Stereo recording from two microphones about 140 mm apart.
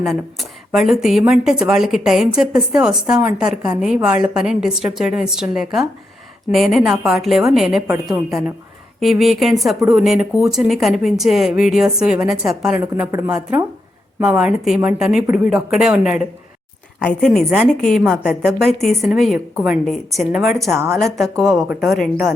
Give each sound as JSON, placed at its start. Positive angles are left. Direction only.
{"t": 0.0, "sound": "a woman's voice", "side_deg": 0}
{"t": 13.1, "sound": "speech", "side_deg": -20}
{"t": 14.3, "sound": "a woman's voice", "side_deg": -10}
{"t": 17.0, "sound": "a woman's voice", "side_deg": 5}
{"t": 20.7, "sound": "a woman's voice", "side_deg": -15}
{"t": 21.8, "sound": "a woman's voice", "side_deg": 0}